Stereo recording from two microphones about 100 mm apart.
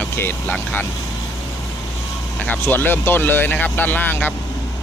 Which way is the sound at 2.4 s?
20° left (ahead or behind).